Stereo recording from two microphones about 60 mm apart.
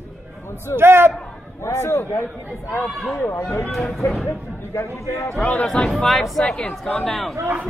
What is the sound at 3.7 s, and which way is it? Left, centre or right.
Speech, centre.